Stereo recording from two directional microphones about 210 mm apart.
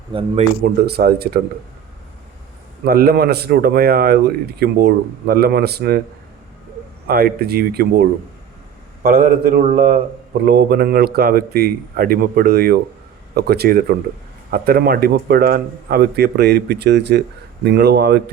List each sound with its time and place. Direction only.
0.1 s a man's voice: 25° right (ahead or behind)
0.6 s a man's voice: 50° right (ahead or behind)
2.8 s a man's voice: 45° right (ahead or behind)
7.1 s a man's voice: 45° right (ahead or behind)
9.0 s a man's voice: 45° right (ahead or behind)